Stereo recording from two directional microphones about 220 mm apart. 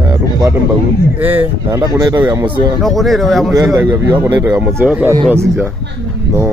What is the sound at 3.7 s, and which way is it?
Speech, 10° right (ahead or behind).